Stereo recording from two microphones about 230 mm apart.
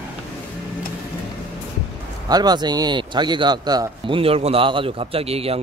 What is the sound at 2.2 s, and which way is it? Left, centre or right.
Speech, centre.